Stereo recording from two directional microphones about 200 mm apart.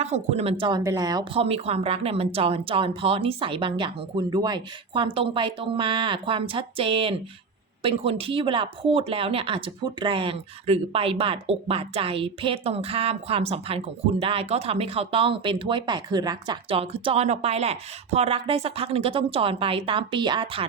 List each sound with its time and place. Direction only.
0.0 s speech: 35° right (ahead or behind)